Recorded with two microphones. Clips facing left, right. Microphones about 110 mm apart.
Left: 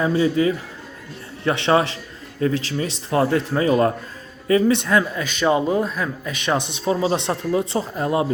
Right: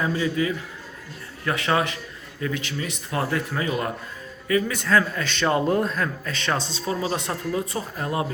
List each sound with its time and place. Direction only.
0.0 s a man's voice: 25° left (ahead or behind)